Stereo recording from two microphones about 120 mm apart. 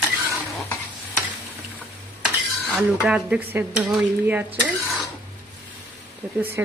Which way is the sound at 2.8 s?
10° right (ahead or behind).